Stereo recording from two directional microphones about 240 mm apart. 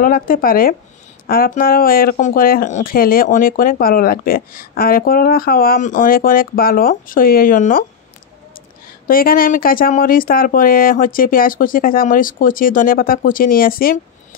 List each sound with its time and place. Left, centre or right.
0.0 s speech: left
9.0 s speech: left